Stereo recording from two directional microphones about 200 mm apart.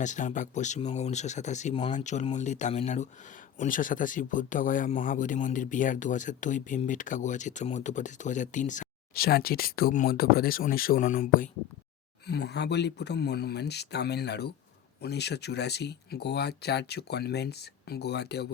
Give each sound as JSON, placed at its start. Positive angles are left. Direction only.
{"t": 0.0, "sound": "speech", "side_deg": 40}
{"t": 12.2, "sound": "speech", "side_deg": 55}